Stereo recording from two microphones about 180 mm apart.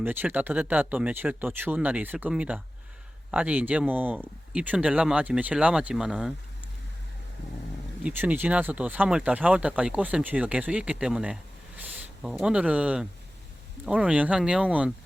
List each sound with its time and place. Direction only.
0.0 s speech: 10° right (ahead or behind)
8.0 s speech: 10° right (ahead or behind)